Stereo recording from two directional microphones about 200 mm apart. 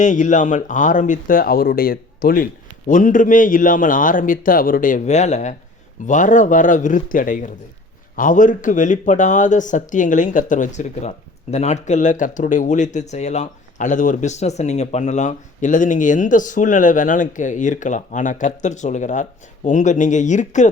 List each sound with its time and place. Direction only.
0.0 s speech: 40° left (ahead or behind)